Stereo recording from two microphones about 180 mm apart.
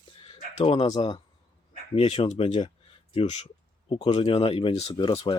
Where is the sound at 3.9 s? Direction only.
30° left (ahead or behind).